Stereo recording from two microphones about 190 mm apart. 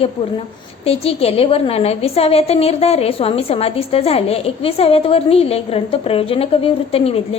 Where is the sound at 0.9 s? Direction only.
30° left (ahead or behind).